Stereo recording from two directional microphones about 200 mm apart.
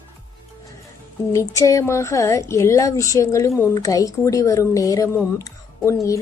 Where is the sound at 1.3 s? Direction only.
15° left (ahead or behind).